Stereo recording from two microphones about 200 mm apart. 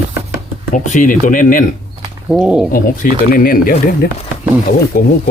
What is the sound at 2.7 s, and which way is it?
Speech, 45° left (ahead or behind).